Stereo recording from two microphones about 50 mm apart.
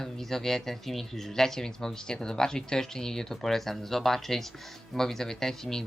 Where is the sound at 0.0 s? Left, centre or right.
Centre.